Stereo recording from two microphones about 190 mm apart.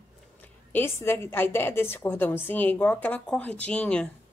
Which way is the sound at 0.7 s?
10° left (ahead or behind).